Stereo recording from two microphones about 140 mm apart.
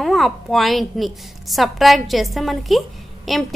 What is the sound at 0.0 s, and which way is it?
A woman's voice, centre (ahead or behind).